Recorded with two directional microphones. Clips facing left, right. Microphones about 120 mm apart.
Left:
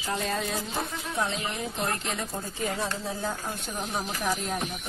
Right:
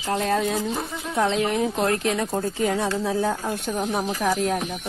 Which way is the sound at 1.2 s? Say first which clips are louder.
Right 9 dB; 85° right.